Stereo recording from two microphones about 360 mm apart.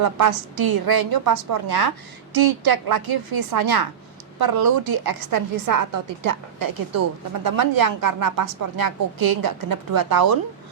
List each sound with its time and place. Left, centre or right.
0.0 s a woman's voice: right